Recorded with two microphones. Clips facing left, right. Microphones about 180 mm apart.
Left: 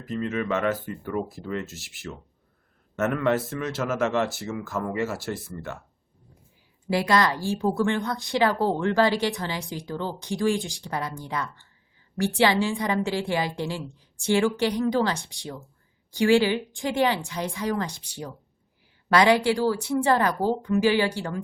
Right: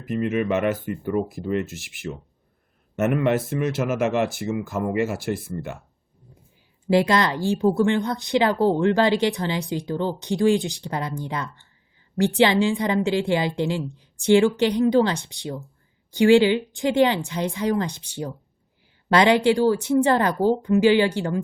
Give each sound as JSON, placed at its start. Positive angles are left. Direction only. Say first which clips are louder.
{"t": 0.0, "sound": "speech", "louder": "right 5 dB", "side_deg": -15}
{"t": 6.9, "sound": "a woman's voice", "louder": "right 3 dB", "side_deg": -25}